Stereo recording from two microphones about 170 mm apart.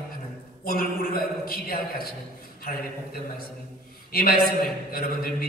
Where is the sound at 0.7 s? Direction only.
60° left (ahead or behind).